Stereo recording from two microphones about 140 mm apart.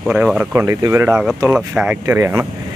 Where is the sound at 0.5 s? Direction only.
20° right (ahead or behind).